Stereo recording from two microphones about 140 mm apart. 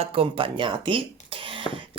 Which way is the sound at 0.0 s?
40° right (ahead or behind).